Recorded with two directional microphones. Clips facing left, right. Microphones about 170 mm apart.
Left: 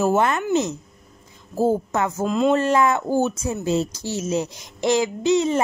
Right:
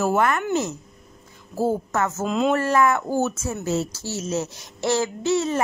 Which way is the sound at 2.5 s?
20° left (ahead or behind).